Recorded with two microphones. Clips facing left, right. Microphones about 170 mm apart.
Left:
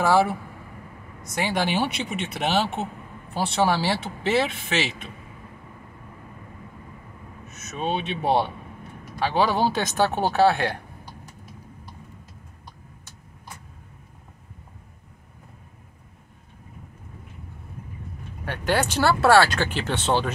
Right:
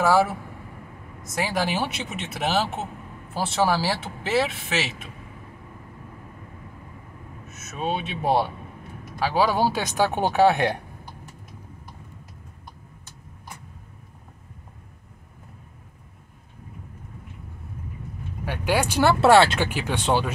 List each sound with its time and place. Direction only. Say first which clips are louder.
0.0 s speech: even; centre (ahead or behind)
7.5 s speech: left 1 dB; 5° right (ahead or behind)
18.4 s speech: even; 10° right (ahead or behind)
19.7 s speech: even; 10° right (ahead or behind)